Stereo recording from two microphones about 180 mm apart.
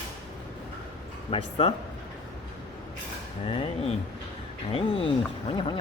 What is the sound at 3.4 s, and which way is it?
Speech, 30° left (ahead or behind).